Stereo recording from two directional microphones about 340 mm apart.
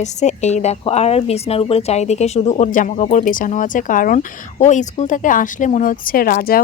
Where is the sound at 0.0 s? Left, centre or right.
Centre.